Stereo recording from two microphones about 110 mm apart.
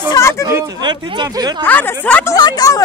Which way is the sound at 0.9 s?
40° right (ahead or behind).